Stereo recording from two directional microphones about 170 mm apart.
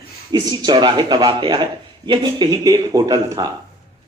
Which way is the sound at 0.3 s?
25° right (ahead or behind).